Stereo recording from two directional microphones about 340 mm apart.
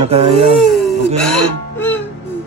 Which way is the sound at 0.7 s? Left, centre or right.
Centre.